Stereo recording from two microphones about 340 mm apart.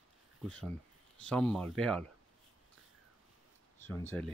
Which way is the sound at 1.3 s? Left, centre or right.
Centre.